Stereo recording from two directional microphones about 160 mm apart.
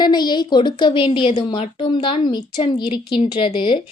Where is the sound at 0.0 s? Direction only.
25° left (ahead or behind).